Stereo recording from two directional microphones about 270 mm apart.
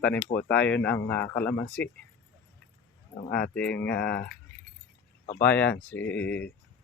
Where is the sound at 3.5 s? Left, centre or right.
Centre.